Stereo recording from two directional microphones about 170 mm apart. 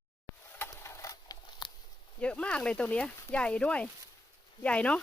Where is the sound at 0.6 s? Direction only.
15° left (ahead or behind).